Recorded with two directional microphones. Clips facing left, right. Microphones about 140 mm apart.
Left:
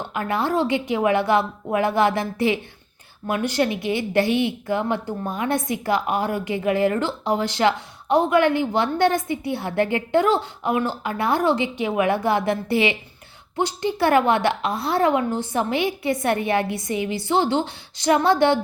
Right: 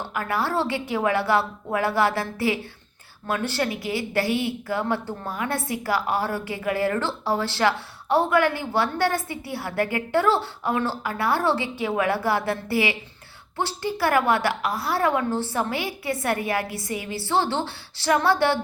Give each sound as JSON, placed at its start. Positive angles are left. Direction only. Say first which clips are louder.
{"t": 0.0, "sound": "a woman's voice", "louder": "left 2 dB", "side_deg": 20}